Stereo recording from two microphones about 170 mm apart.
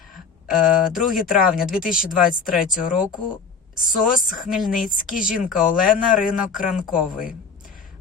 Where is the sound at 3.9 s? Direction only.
55° left (ahead or behind).